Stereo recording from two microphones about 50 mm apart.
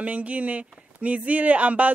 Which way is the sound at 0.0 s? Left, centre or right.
Right.